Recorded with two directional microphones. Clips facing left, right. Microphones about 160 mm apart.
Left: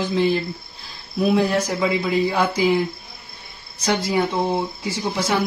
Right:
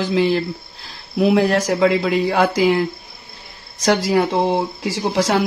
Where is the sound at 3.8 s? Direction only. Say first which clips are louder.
Right 4 dB; 90° right.